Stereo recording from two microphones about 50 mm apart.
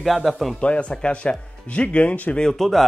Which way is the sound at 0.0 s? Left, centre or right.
Centre.